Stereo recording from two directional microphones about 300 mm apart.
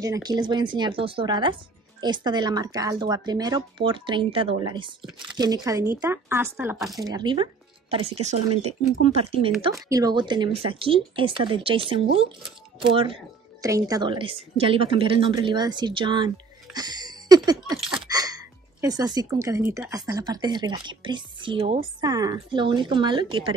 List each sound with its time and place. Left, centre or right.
0.0 s a woman's voice: centre
16.7 s a sound: centre
18.0 s a woman's voice: centre